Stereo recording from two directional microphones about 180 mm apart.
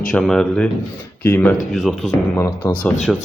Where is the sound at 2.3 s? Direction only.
15° left (ahead or behind).